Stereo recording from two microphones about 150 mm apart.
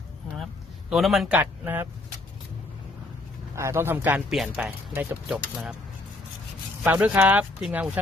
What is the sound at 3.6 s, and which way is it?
Speech, 15° right (ahead or behind).